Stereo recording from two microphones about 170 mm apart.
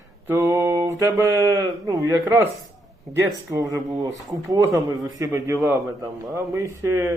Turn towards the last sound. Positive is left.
turn(degrees=-15)  # may be behind; listen again after turning